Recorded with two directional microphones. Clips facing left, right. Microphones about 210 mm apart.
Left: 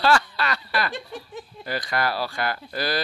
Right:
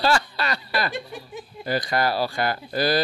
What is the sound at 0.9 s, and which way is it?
Speech, 10° right (ahead or behind).